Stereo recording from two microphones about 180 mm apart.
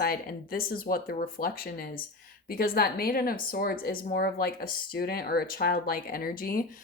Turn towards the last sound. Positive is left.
turn(degrees=55)  # may be behind; listen again after turning